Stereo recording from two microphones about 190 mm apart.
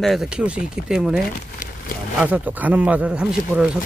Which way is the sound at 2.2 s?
10° right (ahead or behind).